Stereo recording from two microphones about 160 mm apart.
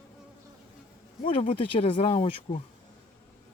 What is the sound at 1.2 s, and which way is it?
Speech, 35° left (ahead or behind).